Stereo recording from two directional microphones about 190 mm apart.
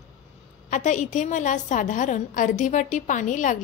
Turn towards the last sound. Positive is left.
turn(degrees=40)  # may be behind; listen again after turning